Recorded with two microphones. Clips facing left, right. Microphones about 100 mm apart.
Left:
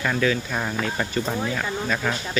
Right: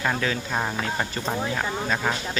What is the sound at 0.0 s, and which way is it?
Speech, 25° right (ahead or behind).